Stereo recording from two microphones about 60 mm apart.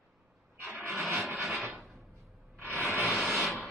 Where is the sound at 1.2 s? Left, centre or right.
Centre.